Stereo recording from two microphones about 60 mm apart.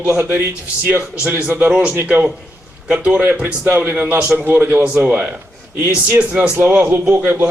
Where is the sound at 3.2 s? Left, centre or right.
Right.